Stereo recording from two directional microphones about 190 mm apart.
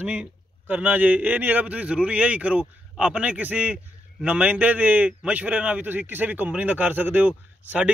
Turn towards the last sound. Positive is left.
turn(degrees=-5)  # may be behind; listen again after turning